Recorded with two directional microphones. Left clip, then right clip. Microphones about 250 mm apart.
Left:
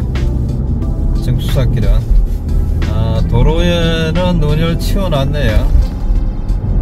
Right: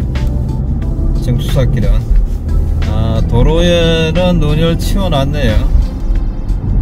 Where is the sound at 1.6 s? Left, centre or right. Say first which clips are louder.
Right 2 dB; centre.